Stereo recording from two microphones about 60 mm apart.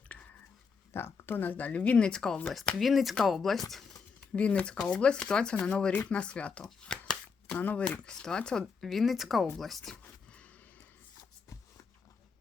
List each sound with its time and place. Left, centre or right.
0.1 s a sound: left
0.9 s speech: left; by 2.4 s centre
2.7 s speech: centre
4.4 s speech: centre
6.7 s shuffling cards: centre
7.8 s speech: centre
8.8 s speech: centre
9.9 s a sound: left